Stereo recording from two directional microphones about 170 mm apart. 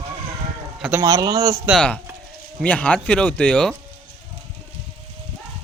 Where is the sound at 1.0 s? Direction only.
20° right (ahead or behind).